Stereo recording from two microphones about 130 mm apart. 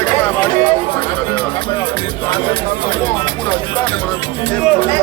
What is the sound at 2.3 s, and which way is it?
Speech, 45° left (ahead or behind).